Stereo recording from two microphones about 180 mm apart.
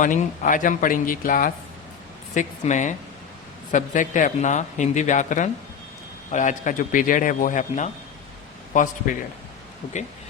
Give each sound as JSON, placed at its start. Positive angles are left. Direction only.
{"t": 0.0, "sound": "speech", "side_deg": 45}